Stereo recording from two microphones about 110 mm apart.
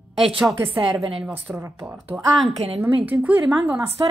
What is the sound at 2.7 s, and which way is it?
A woman's voice, 15° right (ahead or behind).